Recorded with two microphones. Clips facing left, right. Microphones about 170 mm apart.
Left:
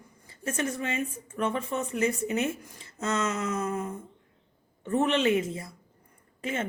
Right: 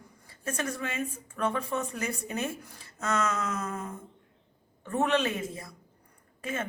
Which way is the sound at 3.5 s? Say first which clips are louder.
Left 4 dB; 25° left (ahead or behind).